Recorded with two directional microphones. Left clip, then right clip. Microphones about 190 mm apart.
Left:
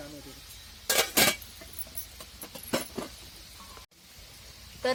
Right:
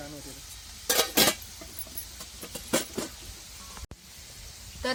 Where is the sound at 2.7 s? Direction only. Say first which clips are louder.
Right 3 dB; 5° right (ahead or behind).